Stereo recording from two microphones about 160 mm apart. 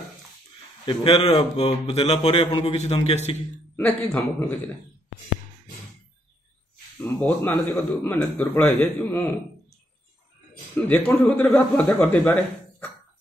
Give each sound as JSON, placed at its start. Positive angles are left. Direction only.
{"t": 0.8, "sound": "a man's voice", "side_deg": 35}
{"t": 3.7, "sound": "a man's voice", "side_deg": 15}
{"t": 7.0, "sound": "a man's voice", "side_deg": 10}
{"t": 10.8, "sound": "a man's voice", "side_deg": 10}